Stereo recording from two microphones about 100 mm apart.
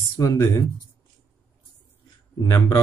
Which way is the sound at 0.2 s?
30° left (ahead or behind).